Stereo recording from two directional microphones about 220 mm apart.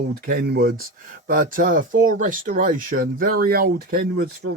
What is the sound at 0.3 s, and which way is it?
Speech, 45° right (ahead or behind).